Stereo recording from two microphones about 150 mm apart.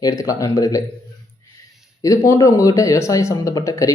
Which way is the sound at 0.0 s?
25° left (ahead or behind).